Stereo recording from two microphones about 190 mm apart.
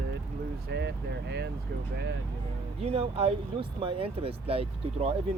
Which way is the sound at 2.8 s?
30° right (ahead or behind).